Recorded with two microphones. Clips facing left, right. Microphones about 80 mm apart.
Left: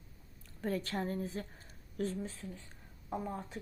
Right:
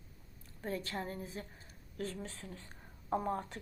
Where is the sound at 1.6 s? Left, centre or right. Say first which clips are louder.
Left 5 dB; left.